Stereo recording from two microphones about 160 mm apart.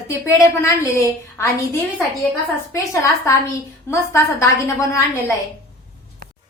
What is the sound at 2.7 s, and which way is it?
A woman's voice, 20° left (ahead or behind).